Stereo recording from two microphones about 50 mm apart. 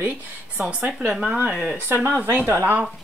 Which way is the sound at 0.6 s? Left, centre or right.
Right.